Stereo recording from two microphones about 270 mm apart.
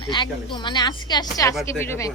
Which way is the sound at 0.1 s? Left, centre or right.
Centre.